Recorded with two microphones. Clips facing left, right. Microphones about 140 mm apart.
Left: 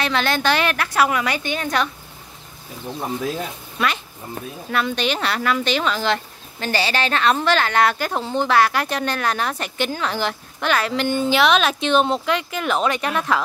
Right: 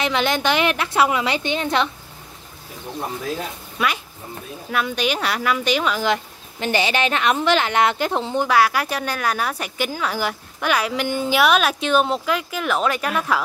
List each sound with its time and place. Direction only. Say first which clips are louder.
0.0 s a woman's voice: even; 15° right (ahead or behind)
3.7 s speech: even; 10° right (ahead or behind)